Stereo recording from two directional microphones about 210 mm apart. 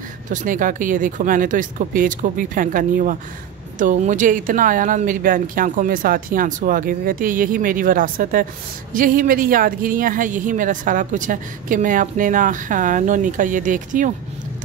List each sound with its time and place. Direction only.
0.3 s speech: 40° right (ahead or behind)